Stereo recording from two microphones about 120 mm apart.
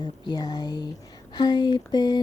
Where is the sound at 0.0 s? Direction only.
35° left (ahead or behind).